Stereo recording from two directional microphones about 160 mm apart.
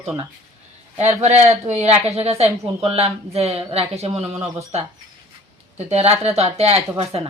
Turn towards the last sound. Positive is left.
turn(degrees=-40)  # may be behind; listen again after turning